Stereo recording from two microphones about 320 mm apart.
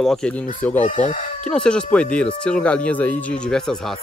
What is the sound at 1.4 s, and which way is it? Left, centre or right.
Speech, centre.